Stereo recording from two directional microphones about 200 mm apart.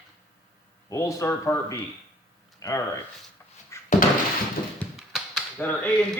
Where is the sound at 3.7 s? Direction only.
15° left (ahead or behind).